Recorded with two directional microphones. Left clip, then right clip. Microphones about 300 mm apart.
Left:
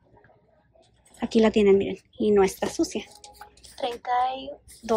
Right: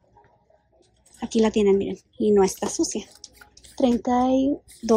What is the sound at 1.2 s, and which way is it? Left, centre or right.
Speech, centre.